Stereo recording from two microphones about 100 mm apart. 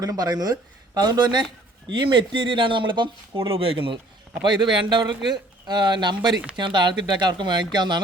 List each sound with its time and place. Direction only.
0.0 s speech: 40° right (ahead or behind); by 3.9 s 65° right (ahead or behind)
4.4 s a man's voice: 50° right (ahead or behind)